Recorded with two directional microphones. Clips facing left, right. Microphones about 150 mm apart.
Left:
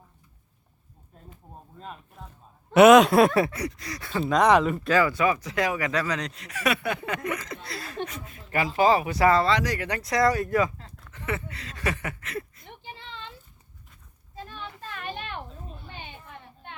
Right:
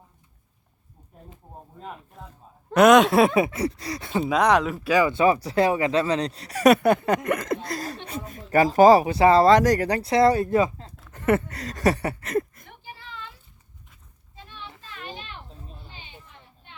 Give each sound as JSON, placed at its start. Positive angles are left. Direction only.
{"t": 2.7, "sound": "speech", "side_deg": 5}
{"t": 3.5, "sound": "speech", "side_deg": -30}
{"t": 4.3, "sound": "speech", "side_deg": 0}
{"t": 4.9, "sound": "speech", "side_deg": -15}
{"t": 5.1, "sound": "speech", "side_deg": -30}
{"t": 9.4, "sound": "speech", "side_deg": -45}
{"t": 11.1, "sound": "speech", "side_deg": -50}
{"t": 12.6, "sound": "a sound", "side_deg": 25}
{"t": 14.3, "sound": "a sound", "side_deg": 45}
{"t": 15.9, "sound": "children playing", "side_deg": 55}